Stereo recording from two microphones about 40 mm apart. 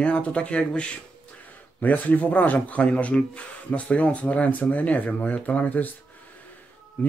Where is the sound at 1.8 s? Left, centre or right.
Left.